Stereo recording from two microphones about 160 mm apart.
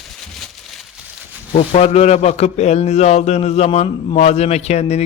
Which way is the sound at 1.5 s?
40° left (ahead or behind).